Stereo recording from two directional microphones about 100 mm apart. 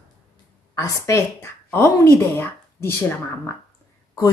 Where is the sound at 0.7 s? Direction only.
30° left (ahead or behind).